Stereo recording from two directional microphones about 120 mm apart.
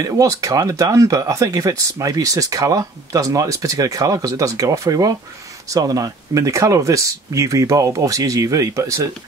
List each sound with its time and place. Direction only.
0.0 s speech: 25° right (ahead or behind)